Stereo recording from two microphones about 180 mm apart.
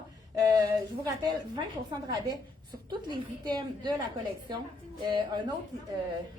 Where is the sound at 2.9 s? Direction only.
25° right (ahead or behind).